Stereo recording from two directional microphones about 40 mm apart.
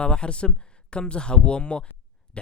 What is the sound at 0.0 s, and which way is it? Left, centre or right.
Speech, left.